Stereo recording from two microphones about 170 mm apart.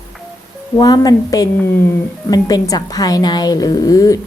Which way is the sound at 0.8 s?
20° left (ahead or behind).